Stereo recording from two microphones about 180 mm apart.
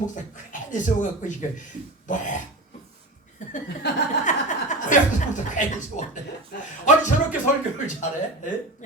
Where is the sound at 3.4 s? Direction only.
45° left (ahead or behind).